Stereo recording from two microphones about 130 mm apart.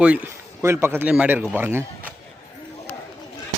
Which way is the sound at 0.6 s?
20° right (ahead or behind).